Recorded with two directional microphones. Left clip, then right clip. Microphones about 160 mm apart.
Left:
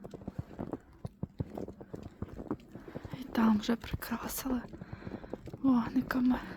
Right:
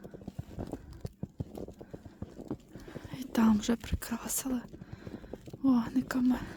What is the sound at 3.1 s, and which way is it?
Speech, 35° right (ahead or behind).